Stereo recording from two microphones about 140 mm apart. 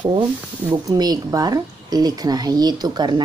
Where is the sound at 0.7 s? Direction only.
25° right (ahead or behind).